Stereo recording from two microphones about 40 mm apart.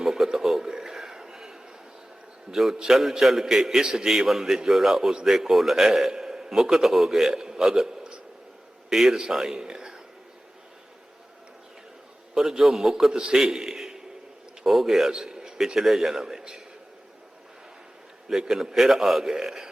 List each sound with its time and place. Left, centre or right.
0.0 s a sound: centre
2.5 s a man's voice: centre
12.4 s a man's voice: centre
14.6 s a man's voice: centre
15.1 s a man's voice: centre
18.3 s a man's voice: centre